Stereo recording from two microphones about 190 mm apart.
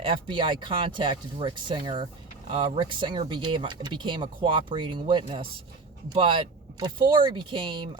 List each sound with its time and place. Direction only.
0.0 s speech: 25° right (ahead or behind)